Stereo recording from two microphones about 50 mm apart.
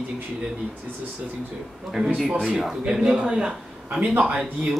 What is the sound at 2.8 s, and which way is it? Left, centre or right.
Speech, centre.